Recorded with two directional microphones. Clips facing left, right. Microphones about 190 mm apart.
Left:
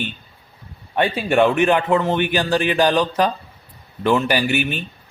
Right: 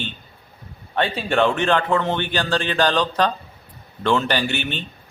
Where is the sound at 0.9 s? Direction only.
10° left (ahead or behind).